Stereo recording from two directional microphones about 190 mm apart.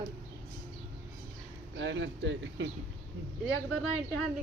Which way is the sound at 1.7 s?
70° right (ahead or behind).